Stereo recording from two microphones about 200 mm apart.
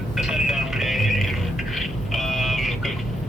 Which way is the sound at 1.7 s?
Centre (ahead or behind).